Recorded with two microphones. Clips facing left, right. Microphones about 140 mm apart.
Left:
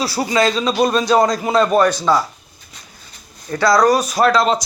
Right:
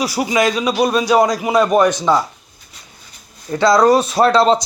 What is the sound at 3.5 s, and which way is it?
Speech, 20° right (ahead or behind).